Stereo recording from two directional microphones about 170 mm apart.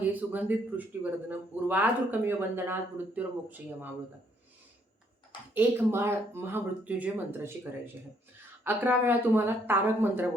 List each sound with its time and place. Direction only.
0.0 s speech: 10° right (ahead or behind)
1.6 s speech: 10° right (ahead or behind)
5.5 s speech: 15° right (ahead or behind)